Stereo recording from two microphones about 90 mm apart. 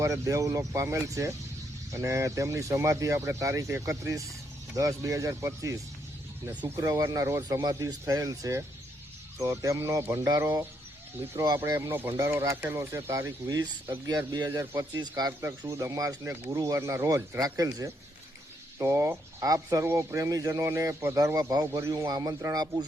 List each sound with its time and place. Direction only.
0.0 s speech: 35° right (ahead or behind)
7.6 s speech: 45° right (ahead or behind)
15.3 s speech: 25° right (ahead or behind); by 22.9 s 45° right (ahead or behind)